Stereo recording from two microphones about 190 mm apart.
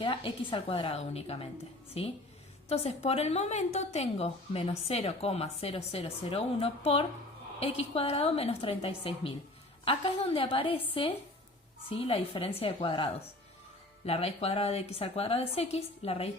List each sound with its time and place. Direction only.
0.0 s a woman's voice: 25° left (ahead or behind)